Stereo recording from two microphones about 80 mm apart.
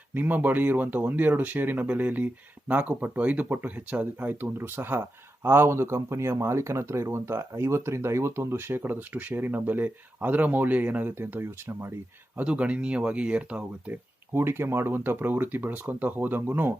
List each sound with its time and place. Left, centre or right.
0.1 s speech: right
12.4 s speech: centre
14.3 s speech: right